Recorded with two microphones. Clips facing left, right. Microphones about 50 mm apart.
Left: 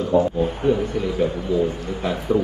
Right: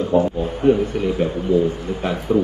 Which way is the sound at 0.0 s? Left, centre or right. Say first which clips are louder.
Right 1 dB; right.